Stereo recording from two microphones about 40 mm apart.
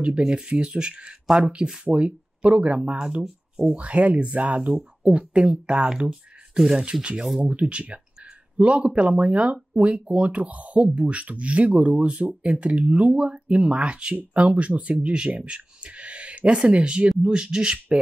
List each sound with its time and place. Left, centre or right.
0.5 s speech: right
1.2 s speech: centre
1.9 s speech: right
7.2 s speech: centre
7.4 s speech: right